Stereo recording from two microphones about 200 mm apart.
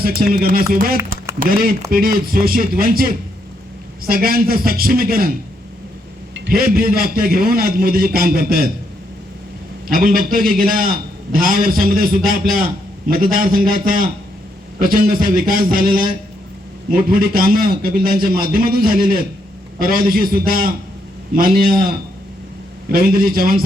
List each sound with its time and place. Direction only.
0.0 s a man's voice: 45° right (ahead or behind)
6.3 s a man's voice: 55° right (ahead or behind)
9.8 s a man's voice: 45° right (ahead or behind)